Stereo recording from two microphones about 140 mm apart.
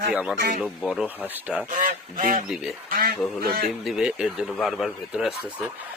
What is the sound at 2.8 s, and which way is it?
Speech, 90° right.